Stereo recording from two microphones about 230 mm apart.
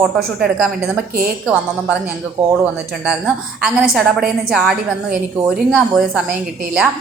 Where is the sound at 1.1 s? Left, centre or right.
Right.